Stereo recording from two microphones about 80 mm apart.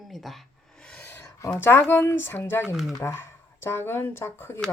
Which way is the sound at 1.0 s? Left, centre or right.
Left.